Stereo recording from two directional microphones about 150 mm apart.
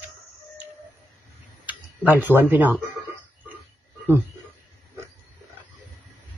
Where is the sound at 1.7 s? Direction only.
10° right (ahead or behind).